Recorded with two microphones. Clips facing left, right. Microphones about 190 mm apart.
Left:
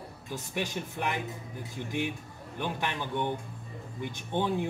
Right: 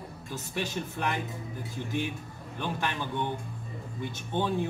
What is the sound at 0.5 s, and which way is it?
Speech, 15° left (ahead or behind).